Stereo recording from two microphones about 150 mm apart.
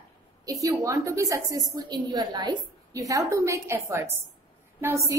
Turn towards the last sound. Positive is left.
turn(degrees=-15)  # may be behind; listen again after turning